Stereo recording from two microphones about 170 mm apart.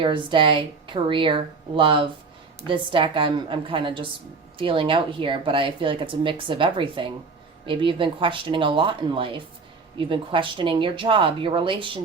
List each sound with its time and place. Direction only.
0.0 s a woman's voice: 30° right (ahead or behind)